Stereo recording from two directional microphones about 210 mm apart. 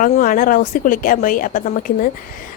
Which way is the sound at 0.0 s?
40° left (ahead or behind).